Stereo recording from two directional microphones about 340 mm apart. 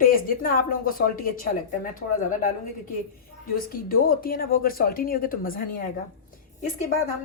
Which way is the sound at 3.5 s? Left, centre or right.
Left.